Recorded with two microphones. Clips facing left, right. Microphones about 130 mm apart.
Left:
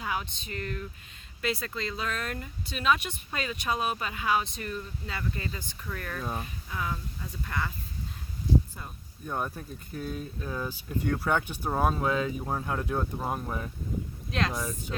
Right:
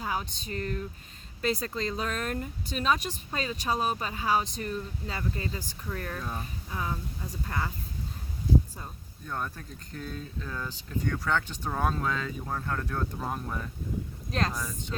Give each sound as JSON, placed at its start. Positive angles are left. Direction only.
{"t": 0.0, "sound": "speech", "side_deg": -35}
{"t": 6.2, "sound": "speech", "side_deg": 10}
{"t": 6.7, "sound": "speech", "side_deg": -25}
{"t": 9.2, "sound": "speech", "side_deg": 15}
{"t": 14.3, "sound": "speech", "side_deg": -40}
{"t": 14.5, "sound": "speech", "side_deg": 10}